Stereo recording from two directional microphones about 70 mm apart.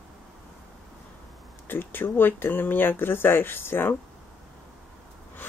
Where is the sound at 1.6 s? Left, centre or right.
Left.